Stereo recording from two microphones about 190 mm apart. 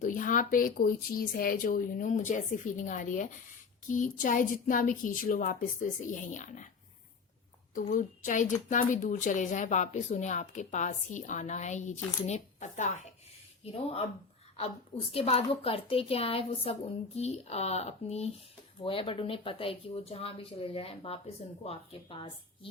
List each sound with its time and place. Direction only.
0.0 s speech: 45° left (ahead or behind)
7.8 s speech: 45° left (ahead or behind)
14.5 s speech: 30° left (ahead or behind)